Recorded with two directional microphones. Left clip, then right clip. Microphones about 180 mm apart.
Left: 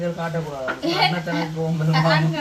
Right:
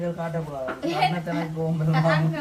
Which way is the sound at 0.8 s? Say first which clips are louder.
Left 3 dB; 15° right (ahead or behind).